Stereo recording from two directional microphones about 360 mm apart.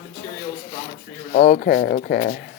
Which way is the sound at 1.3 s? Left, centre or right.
Left.